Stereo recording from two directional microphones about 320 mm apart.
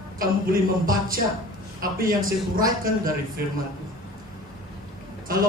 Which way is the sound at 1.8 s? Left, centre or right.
Right.